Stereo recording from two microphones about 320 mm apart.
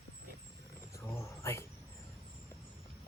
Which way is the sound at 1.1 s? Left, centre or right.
Centre.